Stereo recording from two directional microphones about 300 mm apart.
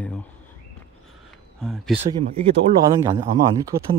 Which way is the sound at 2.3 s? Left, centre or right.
Centre.